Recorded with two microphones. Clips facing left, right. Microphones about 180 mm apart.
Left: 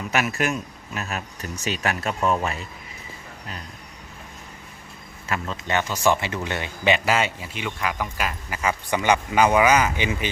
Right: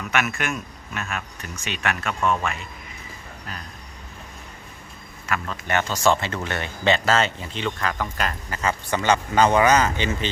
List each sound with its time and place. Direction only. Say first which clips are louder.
0.1 s speech: left 2 dB; 35° left (ahead or behind)
5.3 s speech: even; 20° left (ahead or behind)